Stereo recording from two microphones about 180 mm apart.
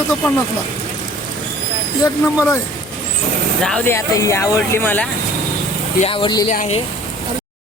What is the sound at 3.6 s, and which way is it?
Speech, 10° left (ahead or behind).